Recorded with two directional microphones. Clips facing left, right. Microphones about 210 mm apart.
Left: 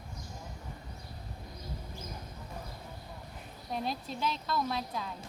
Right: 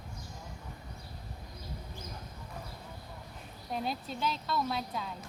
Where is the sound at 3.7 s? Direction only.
Centre (ahead or behind).